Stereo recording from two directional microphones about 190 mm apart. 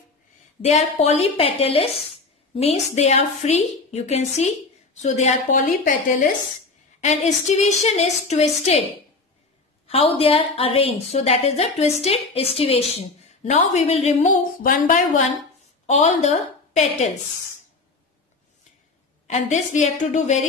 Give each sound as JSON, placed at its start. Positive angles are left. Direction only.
{"t": 0.7, "sound": "a woman's voice", "side_deg": 35}
{"t": 9.8, "sound": "a woman's voice", "side_deg": 30}
{"t": 19.2, "sound": "a woman's voice", "side_deg": 40}